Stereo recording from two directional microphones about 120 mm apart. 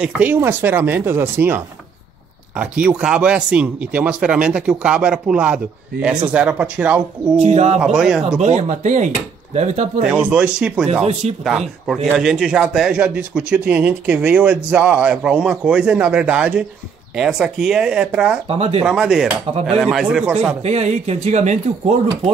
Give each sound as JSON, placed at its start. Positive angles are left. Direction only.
{"t": 0.0, "sound": "speech", "side_deg": -15}
{"t": 7.4, "sound": "speech", "side_deg": -65}
{"t": 7.8, "sound": "speech", "side_deg": -5}
{"t": 8.4, "sound": "speech", "side_deg": -75}
{"t": 10.0, "sound": "speech", "side_deg": -10}
{"t": 18.5, "sound": "speech", "side_deg": -55}
{"t": 18.9, "sound": "speech", "side_deg": -5}
{"t": 20.6, "sound": "speech", "side_deg": -65}